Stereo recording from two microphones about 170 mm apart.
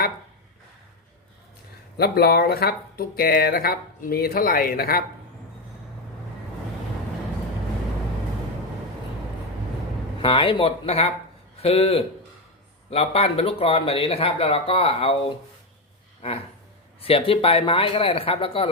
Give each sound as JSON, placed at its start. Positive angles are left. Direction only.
{"t": 2.0, "sound": "speech", "side_deg": 65}
{"t": 10.2, "sound": "speech", "side_deg": 30}
{"t": 17.0, "sound": "speech", "side_deg": 35}